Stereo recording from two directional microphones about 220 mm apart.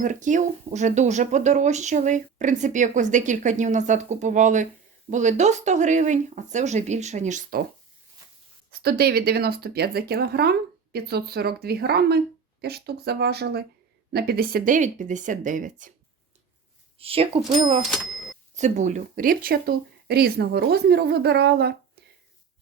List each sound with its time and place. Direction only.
0.0 s speech: 35° right (ahead or behind)
8.7 s speech: 45° right (ahead or behind)
17.0 s speech: 25° right (ahead or behind)
17.9 s cash register: centre (ahead or behind)
18.5 s speech: 35° right (ahead or behind)